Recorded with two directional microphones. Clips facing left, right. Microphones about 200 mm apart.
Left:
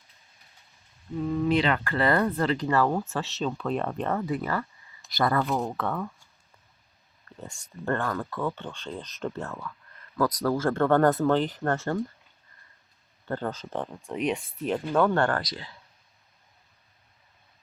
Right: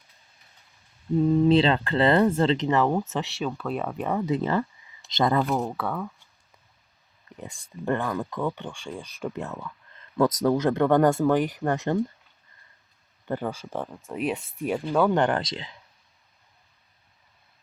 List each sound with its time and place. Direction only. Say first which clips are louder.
1.2 s speech: right 5 dB; 30° right (ahead or behind); by 4.4 s 15° right (ahead or behind)
4.4 s speech: right 5 dB; 25° right (ahead or behind)
5.5 s speech: right 1 dB; 5° right (ahead or behind)
7.3 s a sound: right 2 dB; 15° right (ahead or behind)
7.9 s speech: right 2 dB; 15° right (ahead or behind)
13.2 s speech: right 2 dB; 15° right (ahead or behind)